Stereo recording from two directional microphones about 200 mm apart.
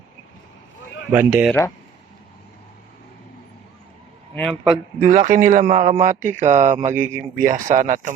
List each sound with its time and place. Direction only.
1.1 s speech: 10° right (ahead or behind)
4.4 s a man's voice: 5° left (ahead or behind)
4.9 s a man's voice: 40° right (ahead or behind)
7.0 s speech: 10° right (ahead or behind)
7.4 s a man's voice: 40° right (ahead or behind)